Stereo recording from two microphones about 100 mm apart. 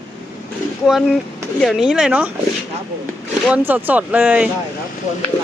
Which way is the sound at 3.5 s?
20° right (ahead or behind).